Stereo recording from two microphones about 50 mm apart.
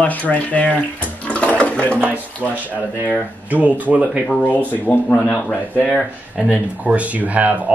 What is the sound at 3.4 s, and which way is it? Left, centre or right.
Speech, right.